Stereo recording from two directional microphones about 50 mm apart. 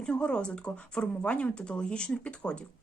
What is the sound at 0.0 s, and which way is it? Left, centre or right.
A woman's voice, left.